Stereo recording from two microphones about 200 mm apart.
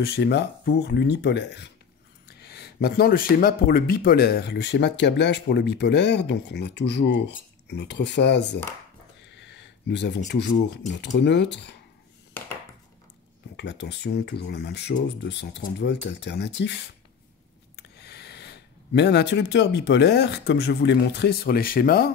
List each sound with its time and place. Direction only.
0.0 s speech: 55° left (ahead or behind)
13.6 s speech: 60° left (ahead or behind)